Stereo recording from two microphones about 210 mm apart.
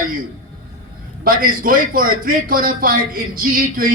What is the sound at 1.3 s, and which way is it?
A man's voice, 45° right (ahead or behind).